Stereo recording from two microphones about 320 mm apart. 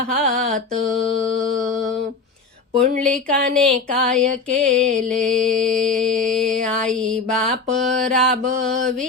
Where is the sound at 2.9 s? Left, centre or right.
Right.